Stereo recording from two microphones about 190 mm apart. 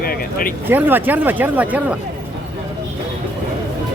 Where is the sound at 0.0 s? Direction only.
50° left (ahead or behind).